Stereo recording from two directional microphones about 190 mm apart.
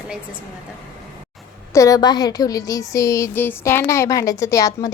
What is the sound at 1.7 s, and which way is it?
A woman's voice, 15° left (ahead or behind).